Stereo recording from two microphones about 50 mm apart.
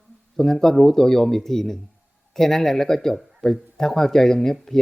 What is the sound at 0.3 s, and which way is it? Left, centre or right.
Speech, centre.